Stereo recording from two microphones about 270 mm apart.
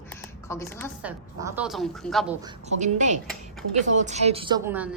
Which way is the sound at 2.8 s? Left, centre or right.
Right.